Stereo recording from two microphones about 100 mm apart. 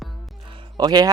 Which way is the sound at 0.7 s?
45° right (ahead or behind).